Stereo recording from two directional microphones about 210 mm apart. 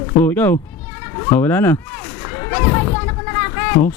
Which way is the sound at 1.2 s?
10° left (ahead or behind).